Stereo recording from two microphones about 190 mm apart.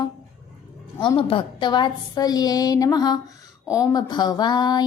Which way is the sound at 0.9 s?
25° left (ahead or behind).